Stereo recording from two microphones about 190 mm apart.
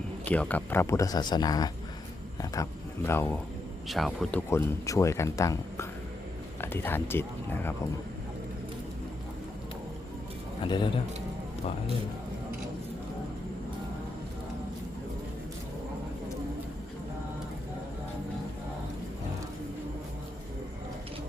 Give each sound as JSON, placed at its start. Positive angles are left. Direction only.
{"t": 0.3, "sound": "speech", "side_deg": 5}
{"t": 3.8, "sound": "speech", "side_deg": 0}
{"t": 10.6, "sound": "a man's voice", "side_deg": 25}